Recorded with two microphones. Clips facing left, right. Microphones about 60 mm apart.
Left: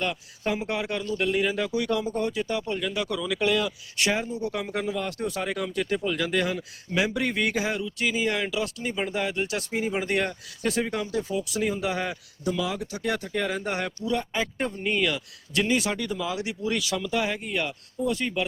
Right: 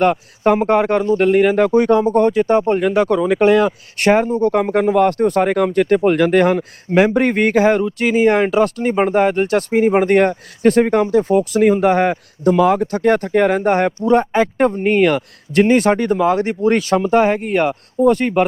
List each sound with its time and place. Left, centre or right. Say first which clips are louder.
0.0 s speech: right 14 dB; right